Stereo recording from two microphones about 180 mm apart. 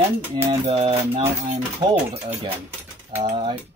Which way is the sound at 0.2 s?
15° right (ahead or behind).